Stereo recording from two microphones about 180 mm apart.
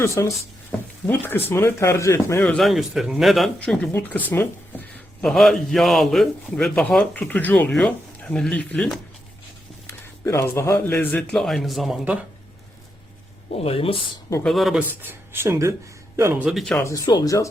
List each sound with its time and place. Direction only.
0.0 s speech: 15° left (ahead or behind)
2.4 s a man's voice: 5° left (ahead or behind)
13.6 s speech: 30° left (ahead or behind)
14.4 s speech: centre (ahead or behind)
16.5 s a man's voice: centre (ahead or behind)
16.7 s speech: 20° left (ahead or behind)